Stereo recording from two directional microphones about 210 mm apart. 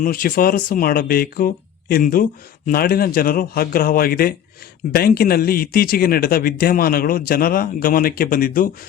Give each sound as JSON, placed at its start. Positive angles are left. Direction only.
{"t": 0.0, "sound": "speech", "side_deg": 40}